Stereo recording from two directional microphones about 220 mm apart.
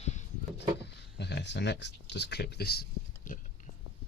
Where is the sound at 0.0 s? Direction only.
30° left (ahead or behind).